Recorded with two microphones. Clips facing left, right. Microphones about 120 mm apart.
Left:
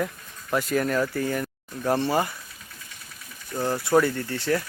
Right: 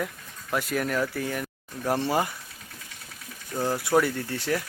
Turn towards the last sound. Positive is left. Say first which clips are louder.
# left 2 dB
turn(degrees=-10)  # may be behind; listen again after turning